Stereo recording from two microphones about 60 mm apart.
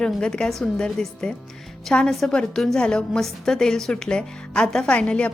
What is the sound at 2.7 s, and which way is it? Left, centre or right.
A woman's voice, centre.